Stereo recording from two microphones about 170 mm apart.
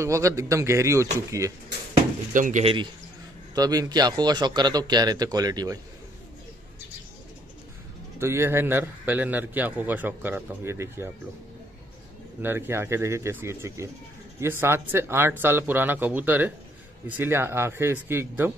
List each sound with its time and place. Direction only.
0.0 s a man's voice: 15° right (ahead or behind)
2.3 s speech: 50° right (ahead or behind)
2.6 s a man's voice: 30° right (ahead or behind)
8.2 s a man's voice: 15° right (ahead or behind)
12.4 s a man's voice: 15° right (ahead or behind)